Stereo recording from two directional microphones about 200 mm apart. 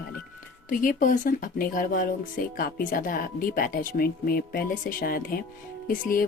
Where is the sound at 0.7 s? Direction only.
45° left (ahead or behind).